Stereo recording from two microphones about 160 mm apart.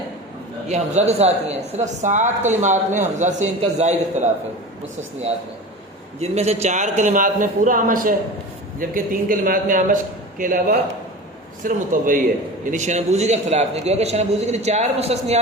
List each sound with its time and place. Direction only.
0.7 s a woman's voice: 45° right (ahead or behind)
6.1 s a woman's voice: 40° right (ahead or behind)